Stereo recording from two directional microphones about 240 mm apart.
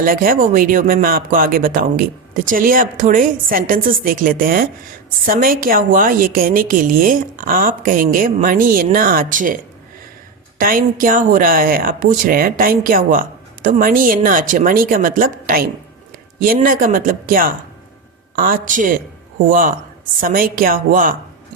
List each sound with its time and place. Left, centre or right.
0.0 s a woman's voice: right
10.6 s a woman's voice: right